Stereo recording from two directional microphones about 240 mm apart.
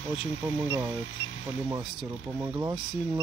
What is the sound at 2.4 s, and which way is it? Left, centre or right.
Speech, centre.